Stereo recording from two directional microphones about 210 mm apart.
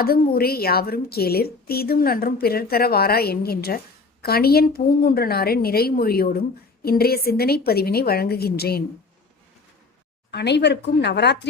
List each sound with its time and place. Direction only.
0.3 s a woman's voice: 45° left (ahead or behind)
10.3 s a woman's voice: 55° left (ahead or behind)